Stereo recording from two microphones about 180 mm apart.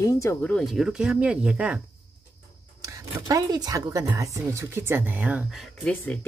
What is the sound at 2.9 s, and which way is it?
Speech, 20° right (ahead or behind).